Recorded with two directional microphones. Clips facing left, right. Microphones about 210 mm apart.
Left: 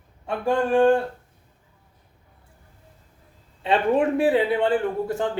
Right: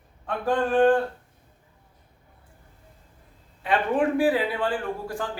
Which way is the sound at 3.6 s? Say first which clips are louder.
Left 3 dB; 25° left (ahead or behind).